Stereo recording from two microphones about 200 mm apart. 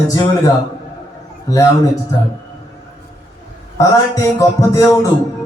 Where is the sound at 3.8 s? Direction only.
15° left (ahead or behind).